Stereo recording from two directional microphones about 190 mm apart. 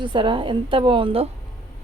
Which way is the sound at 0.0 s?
25° right (ahead or behind).